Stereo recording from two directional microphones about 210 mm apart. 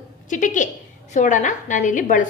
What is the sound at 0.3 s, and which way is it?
A woman's voice, 35° left (ahead or behind).